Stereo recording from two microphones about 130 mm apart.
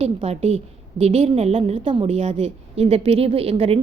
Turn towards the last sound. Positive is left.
turn(degrees=-50)  # may be behind; listen again after turning